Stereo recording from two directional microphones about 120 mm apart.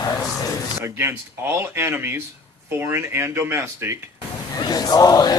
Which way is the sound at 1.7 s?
20° right (ahead or behind).